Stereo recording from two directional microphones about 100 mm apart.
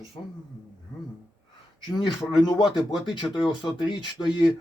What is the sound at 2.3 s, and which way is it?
Speech, 45° left (ahead or behind).